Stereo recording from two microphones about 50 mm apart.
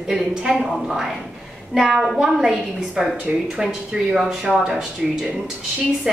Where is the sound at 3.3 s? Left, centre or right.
Right.